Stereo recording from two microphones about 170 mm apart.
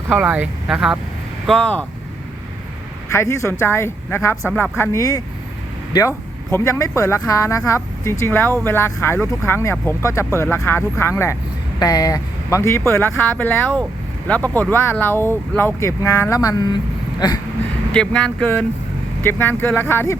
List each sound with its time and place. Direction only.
0.1 s speech: 10° right (ahead or behind)
1.5 s speech: 5° left (ahead or behind)
3.1 s speech: 15° left (ahead or behind)
17.9 s speech: 5° left (ahead or behind)